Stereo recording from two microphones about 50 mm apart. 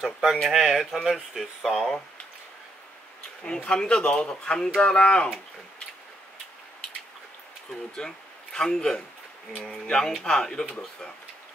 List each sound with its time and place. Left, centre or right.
0.0 s speech: centre
3.4 s speech: centre
8.0 s speech: centre